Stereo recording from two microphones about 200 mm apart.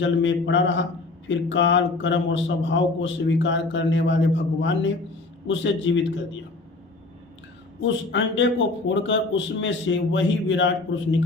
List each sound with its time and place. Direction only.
0.0 s a man's voice: 65° left (ahead or behind)
8.1 s a man's voice: 65° left (ahead or behind)